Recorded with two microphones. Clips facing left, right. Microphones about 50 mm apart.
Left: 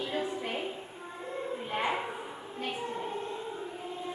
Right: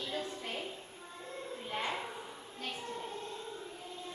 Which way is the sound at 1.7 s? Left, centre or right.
Left.